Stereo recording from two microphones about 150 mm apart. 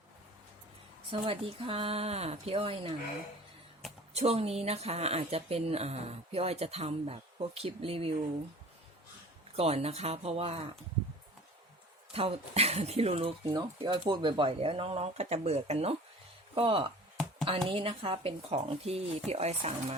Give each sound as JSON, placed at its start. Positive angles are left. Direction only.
{"t": 1.1, "sound": "speech", "side_deg": -40}
{"t": 4.1, "sound": "speech", "side_deg": -45}
{"t": 9.6, "sound": "speech", "side_deg": -45}
{"t": 12.1, "sound": "speech", "side_deg": -40}